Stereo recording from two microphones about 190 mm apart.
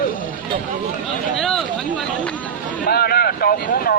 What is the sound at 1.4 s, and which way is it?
Speech, centre (ahead or behind).